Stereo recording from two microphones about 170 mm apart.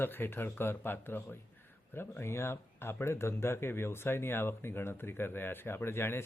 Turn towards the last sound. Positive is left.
turn(degrees=15)  # may be behind; listen again after turning